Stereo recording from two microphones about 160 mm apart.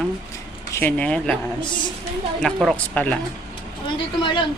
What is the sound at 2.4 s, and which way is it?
Speech, centre (ahead or behind).